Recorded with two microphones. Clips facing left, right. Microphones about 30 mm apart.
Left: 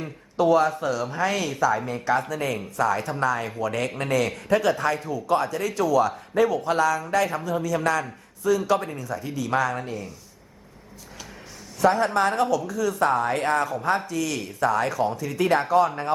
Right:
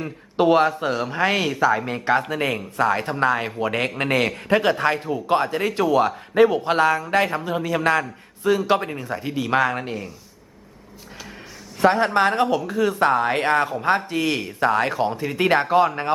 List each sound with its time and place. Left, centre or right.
0.3 s a man's voice: right
11.8 s a man's voice: right